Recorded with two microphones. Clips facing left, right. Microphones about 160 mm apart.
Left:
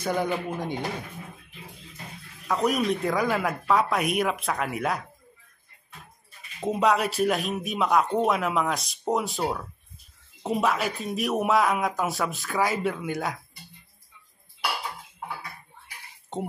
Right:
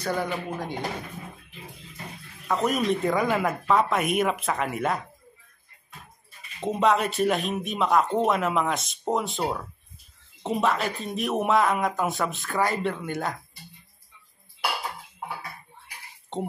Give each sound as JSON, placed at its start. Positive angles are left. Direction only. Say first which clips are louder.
{"t": 0.0, "sound": "speech", "louder": "left 2 dB", "side_deg": 15}
{"t": 2.4, "sound": "speech", "louder": "even", "side_deg": 0}
{"t": 6.6, "sound": "speech", "louder": "even", "side_deg": 0}